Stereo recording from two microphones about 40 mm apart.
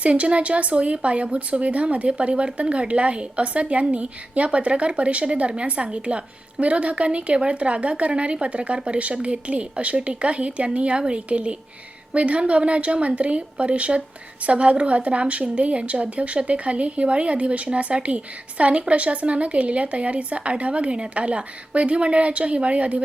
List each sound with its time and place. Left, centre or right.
0.0 s a woman's voice: right